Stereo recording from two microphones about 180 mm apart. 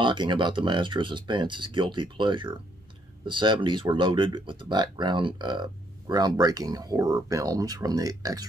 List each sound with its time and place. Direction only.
0.0 s speech: 25° right (ahead or behind)